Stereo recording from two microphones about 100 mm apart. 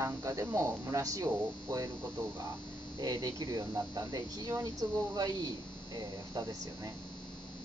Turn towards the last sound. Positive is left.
turn(degrees=-40)  # may be behind; listen again after turning